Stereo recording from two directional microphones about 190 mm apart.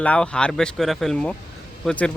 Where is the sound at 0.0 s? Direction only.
5° left (ahead or behind).